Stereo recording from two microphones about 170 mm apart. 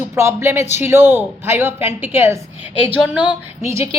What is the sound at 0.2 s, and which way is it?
A woman's voice, 15° right (ahead or behind).